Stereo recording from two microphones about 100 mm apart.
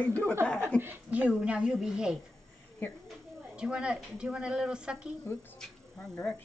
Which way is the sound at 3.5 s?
10° right (ahead or behind).